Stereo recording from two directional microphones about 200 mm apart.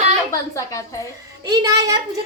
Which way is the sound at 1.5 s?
20° right (ahead or behind).